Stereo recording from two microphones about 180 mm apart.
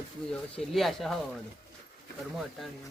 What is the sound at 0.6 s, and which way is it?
Speech, centre (ahead or behind).